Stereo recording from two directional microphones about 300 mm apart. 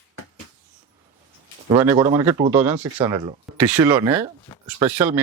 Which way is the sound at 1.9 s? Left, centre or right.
Right.